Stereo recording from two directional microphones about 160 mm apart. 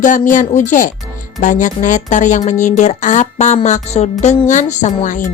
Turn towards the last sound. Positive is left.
turn(degrees=50)  # may be behind; listen again after turning